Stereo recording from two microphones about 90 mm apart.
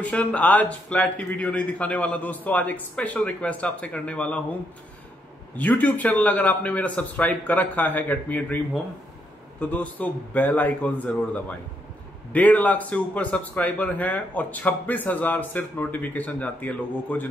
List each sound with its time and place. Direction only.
0.0 s a man's voice: 15° left (ahead or behind)
5.6 s a man's voice: 15° left (ahead or behind)
9.6 s a man's voice: 15° left (ahead or behind)